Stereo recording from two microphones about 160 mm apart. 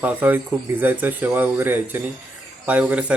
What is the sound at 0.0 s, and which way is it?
Speech, 10° right (ahead or behind).